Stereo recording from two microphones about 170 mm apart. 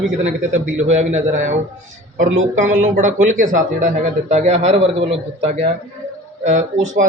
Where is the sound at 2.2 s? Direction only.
90° right.